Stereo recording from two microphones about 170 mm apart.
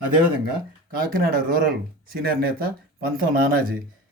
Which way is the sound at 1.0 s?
55° right (ahead or behind).